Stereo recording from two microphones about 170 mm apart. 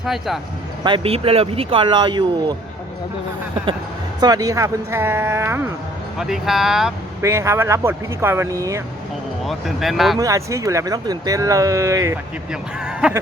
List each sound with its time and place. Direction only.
0.0 s speech: centre (ahead or behind)
0.9 s speech: 30° right (ahead or behind)
4.2 s speech: 20° right (ahead or behind)
6.1 s speech: centre (ahead or behind)
7.2 s speech: 15° right (ahead or behind)
9.4 s speech: centre (ahead or behind)
10.2 s speech: 20° right (ahead or behind)
12.5 s speech: 5° right (ahead or behind)